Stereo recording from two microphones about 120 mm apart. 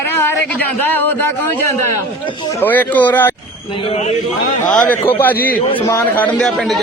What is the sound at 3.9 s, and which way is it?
Speech, 65° left (ahead or behind).